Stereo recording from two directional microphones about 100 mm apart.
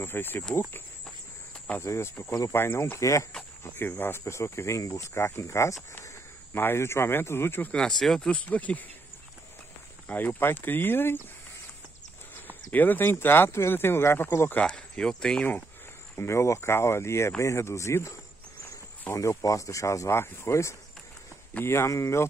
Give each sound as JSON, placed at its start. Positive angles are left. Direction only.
{"t": 0.0, "sound": "speech", "side_deg": 20}
{"t": 1.0, "sound": "walk", "side_deg": 10}
{"t": 1.8, "sound": "speech", "side_deg": 25}
{"t": 7.7, "sound": "speech", "side_deg": 5}
{"t": 10.0, "sound": "speech", "side_deg": 20}
{"t": 12.4, "sound": "speech", "side_deg": 20}
{"t": 14.6, "sound": "speech", "side_deg": 10}
{"t": 16.2, "sound": "speech", "side_deg": 30}
{"t": 19.1, "sound": "speech", "side_deg": 35}